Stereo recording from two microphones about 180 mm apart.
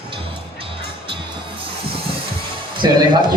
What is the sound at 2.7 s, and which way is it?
Speech, 25° right (ahead or behind).